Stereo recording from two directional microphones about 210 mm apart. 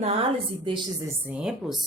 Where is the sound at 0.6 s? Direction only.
20° right (ahead or behind).